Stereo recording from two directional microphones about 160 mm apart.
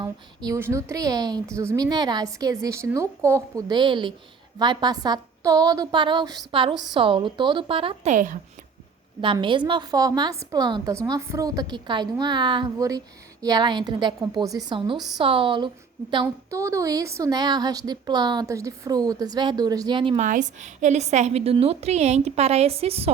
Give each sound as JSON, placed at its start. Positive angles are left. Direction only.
{"t": 0.0, "sound": "a woman's voice", "side_deg": -20}
{"t": 8.1, "sound": "speech", "side_deg": -55}
{"t": 9.2, "sound": "a woman's voice", "side_deg": -30}
{"t": 14.9, "sound": "a woman's voice", "side_deg": 0}
{"t": 15.2, "sound": "a woman's voice", "side_deg": -35}
{"t": 16.2, "sound": "a woman's voice", "side_deg": -20}
{"t": 20.1, "sound": "a woman's voice", "side_deg": -50}